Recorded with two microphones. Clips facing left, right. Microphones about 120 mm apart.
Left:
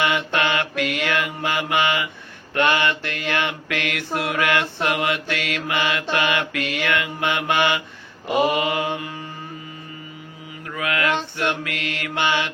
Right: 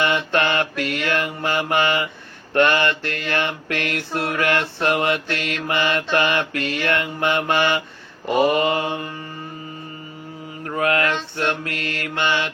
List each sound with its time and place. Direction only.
0.0 s mantra: 45° right (ahead or behind)
10.7 s mantra: 40° right (ahead or behind)